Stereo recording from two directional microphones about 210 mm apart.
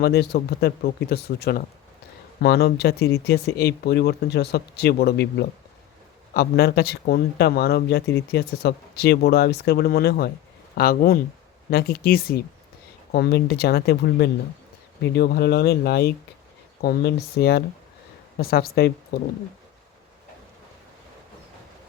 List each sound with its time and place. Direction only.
0.0 s speech: 50° left (ahead or behind)